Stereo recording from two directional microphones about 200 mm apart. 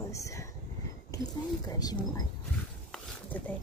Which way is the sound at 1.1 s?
15° left (ahead or behind).